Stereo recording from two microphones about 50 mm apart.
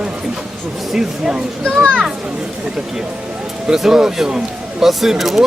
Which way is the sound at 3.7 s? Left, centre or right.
Centre.